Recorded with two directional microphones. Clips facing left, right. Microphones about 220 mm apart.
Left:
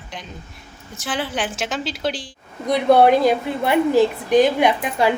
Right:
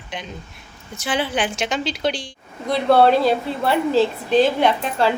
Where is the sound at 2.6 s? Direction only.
15° left (ahead or behind).